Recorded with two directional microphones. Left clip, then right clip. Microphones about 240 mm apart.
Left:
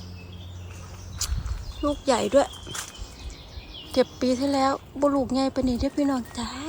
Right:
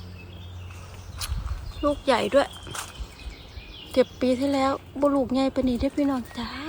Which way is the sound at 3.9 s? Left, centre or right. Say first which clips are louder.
Right 1 dB; centre.